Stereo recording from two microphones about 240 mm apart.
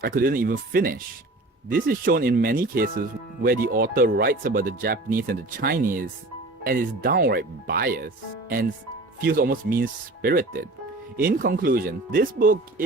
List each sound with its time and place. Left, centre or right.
0.0 s speech: right